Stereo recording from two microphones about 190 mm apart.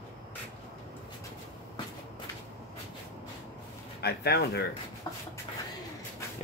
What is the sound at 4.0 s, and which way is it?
Speech, 55° left (ahead or behind).